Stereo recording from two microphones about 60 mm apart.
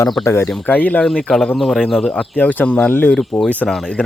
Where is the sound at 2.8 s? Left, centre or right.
Left.